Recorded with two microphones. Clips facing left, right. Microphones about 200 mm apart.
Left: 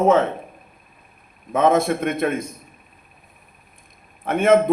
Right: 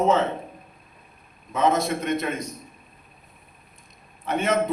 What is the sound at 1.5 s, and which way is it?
A man's voice, 55° left (ahead or behind).